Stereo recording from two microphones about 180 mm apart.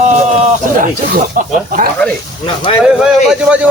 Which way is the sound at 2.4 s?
30° left (ahead or behind).